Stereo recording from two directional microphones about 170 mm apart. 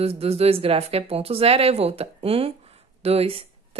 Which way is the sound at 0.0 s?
35° right (ahead or behind).